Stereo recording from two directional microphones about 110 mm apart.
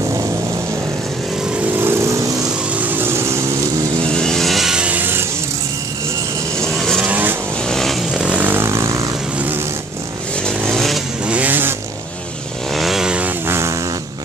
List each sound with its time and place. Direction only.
1.8 s vehicle: 20° right (ahead or behind)
4.2 s vehicle: 5° left (ahead or behind); by 5.2 s 15° right (ahead or behind)
6.6 s vehicle: 5° left (ahead or behind)
7.0 s vehicle: 15° right (ahead or behind)
7.6 s vehicle: 5° left (ahead or behind)
8.1 s vehicle: 10° right (ahead or behind); by 9.1 s 30° right (ahead or behind)
10.4 s vehicle: centre (ahead or behind)
11.2 s vehicle: 15° right (ahead or behind)
12.7 s vehicle: centre (ahead or behind)
13.5 s vehicle: 25° right (ahead or behind)